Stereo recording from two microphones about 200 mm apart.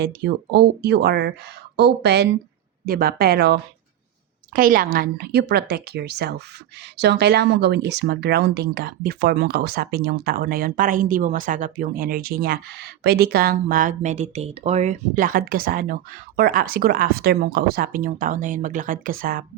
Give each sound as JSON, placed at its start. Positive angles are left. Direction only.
{"t": 0.0, "sound": "speech", "side_deg": -55}